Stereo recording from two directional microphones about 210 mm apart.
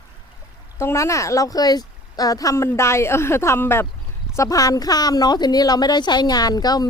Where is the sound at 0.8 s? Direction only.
15° left (ahead or behind).